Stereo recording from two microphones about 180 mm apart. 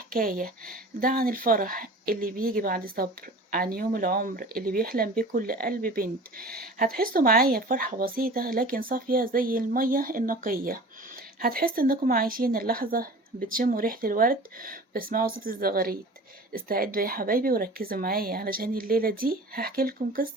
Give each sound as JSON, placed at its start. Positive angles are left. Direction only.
{"t": 0.1, "sound": "speech", "side_deg": -50}